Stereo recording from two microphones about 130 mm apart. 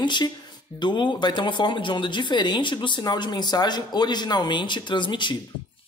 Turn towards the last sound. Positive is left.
turn(degrees=35)  # may be behind; listen again after turning